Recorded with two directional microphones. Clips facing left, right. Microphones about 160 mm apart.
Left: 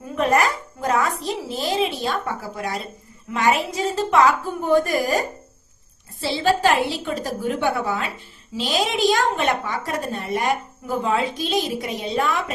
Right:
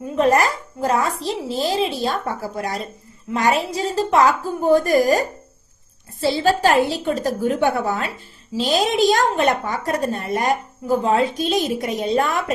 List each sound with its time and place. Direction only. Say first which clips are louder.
0.2 s a woman's voice: right 3 dB; 30° right (ahead or behind)
6.2 s a woman's voice: right 2 dB; 40° right (ahead or behind)